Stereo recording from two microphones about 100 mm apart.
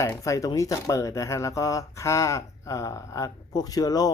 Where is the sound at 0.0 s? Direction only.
30° left (ahead or behind).